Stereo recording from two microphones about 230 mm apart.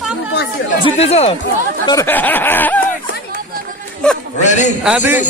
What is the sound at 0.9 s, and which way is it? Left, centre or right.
Speech, left.